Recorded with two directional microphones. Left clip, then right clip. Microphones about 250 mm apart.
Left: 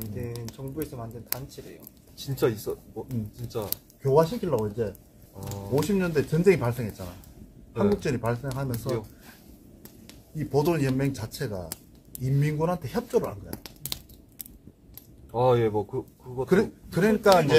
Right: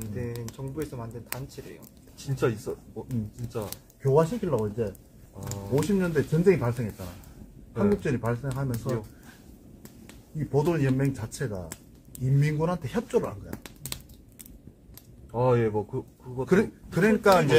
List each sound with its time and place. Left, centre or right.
0.6 s speech: right
2.2 s speech: centre
3.6 s speech: centre
8.0 s speech: centre
15.3 s speech: centre
16.4 s speech: centre